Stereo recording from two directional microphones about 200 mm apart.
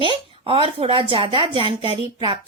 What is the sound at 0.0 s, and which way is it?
Speech, 25° right (ahead or behind).